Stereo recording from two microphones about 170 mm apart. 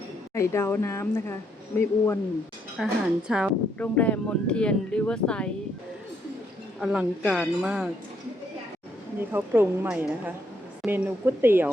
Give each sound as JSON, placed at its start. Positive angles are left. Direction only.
{"t": 0.3, "sound": "speech", "side_deg": 15}
{"t": 2.7, "sound": "speech", "side_deg": -5}
{"t": 3.8, "sound": "speech", "side_deg": 10}
{"t": 6.7, "sound": "speech", "side_deg": -5}
{"t": 9.3, "sound": "a woman's voice", "side_deg": -10}